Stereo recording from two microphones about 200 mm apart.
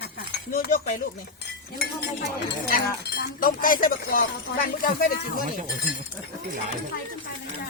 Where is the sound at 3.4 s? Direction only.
45° left (ahead or behind).